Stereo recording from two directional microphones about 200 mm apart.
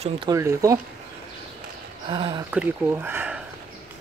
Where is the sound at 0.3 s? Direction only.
15° right (ahead or behind).